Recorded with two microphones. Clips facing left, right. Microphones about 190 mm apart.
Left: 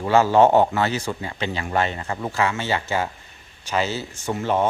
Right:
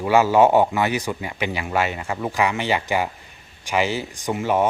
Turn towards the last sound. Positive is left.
turn(degrees=-10)  # may be behind; listen again after turning